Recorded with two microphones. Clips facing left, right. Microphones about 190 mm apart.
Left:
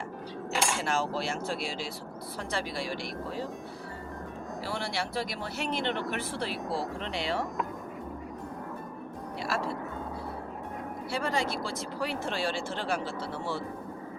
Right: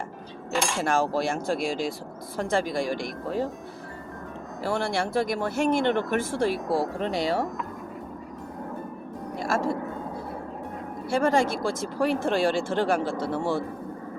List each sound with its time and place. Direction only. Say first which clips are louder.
0.8 s speech: right 6 dB; 50° right (ahead or behind)
4.6 s speech: right 8 dB; 50° right (ahead or behind)
9.4 s speech: right 6 dB; 45° right (ahead or behind)
11.1 s speech: right 8 dB; 50° right (ahead or behind)